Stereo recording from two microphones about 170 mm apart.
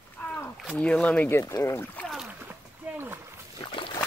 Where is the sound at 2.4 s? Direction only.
10° right (ahead or behind).